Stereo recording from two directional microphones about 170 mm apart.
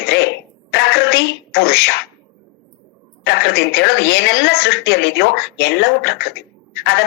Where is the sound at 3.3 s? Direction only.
75° left (ahead or behind).